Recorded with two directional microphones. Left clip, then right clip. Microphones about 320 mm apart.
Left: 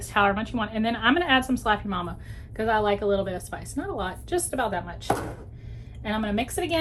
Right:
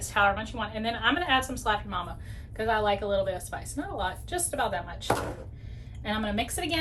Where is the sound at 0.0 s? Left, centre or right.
Left.